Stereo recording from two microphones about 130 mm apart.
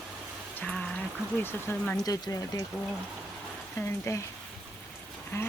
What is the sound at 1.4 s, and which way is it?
Speech, 15° left (ahead or behind).